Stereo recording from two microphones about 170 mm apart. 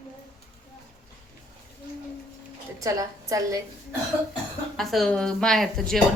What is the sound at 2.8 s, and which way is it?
Speech, 20° right (ahead or behind).